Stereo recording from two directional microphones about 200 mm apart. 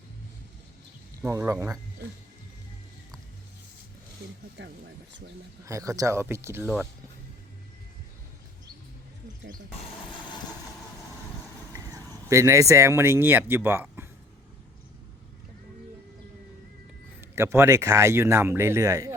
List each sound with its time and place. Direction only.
1.2 s a man's voice: 10° right (ahead or behind)
4.6 s speech: 65° right (ahead or behind)
5.6 s a man's voice: 15° right (ahead or behind)
11.7 s vehicle: 15° right (ahead or behind)
12.3 s a man's voice: 15° right (ahead or behind)
17.2 s a man's voice: 10° right (ahead or behind)